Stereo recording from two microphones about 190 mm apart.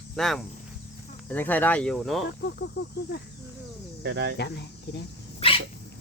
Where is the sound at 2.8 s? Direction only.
65° left (ahead or behind).